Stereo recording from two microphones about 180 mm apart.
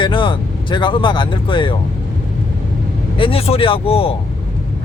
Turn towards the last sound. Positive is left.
turn(degrees=30)  # may be behind; listen again after turning